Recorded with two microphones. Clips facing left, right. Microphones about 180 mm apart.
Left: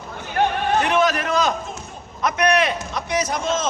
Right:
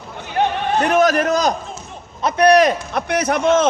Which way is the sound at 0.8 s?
45° right (ahead or behind).